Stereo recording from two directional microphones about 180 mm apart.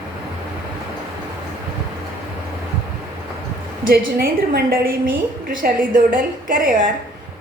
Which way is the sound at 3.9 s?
55° right (ahead or behind).